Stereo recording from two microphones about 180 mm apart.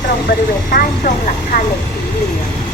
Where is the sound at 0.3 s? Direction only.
55° left (ahead or behind).